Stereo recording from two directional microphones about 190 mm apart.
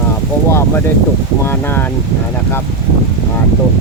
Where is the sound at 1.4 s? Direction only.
10° left (ahead or behind).